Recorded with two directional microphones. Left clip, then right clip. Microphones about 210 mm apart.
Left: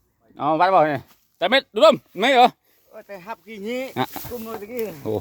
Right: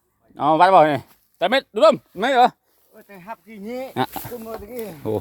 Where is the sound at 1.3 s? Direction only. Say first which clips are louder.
Even; centre (ahead or behind); by 3.9 s 35° left (ahead or behind).